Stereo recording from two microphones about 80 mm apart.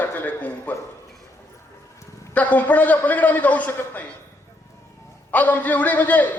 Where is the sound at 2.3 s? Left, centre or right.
Centre.